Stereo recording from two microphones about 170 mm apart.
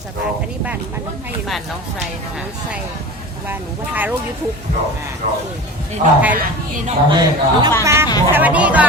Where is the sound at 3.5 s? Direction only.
10° right (ahead or behind).